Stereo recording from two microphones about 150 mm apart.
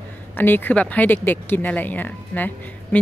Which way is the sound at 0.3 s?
15° left (ahead or behind).